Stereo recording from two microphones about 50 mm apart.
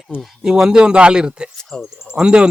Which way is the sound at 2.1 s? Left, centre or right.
Centre.